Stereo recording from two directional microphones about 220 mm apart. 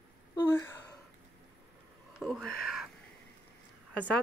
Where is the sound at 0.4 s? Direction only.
15° left (ahead or behind).